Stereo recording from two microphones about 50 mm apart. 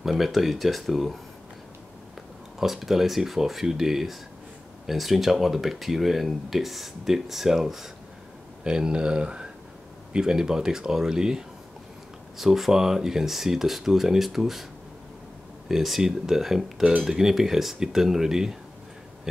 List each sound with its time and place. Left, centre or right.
0.0 s speech: centre
2.6 s speech: centre
8.6 s speech: centre
15.7 s speech: centre